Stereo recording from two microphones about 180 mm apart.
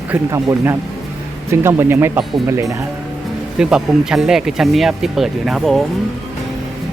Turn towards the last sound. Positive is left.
turn(degrees=0)  # may be behind; listen again after turning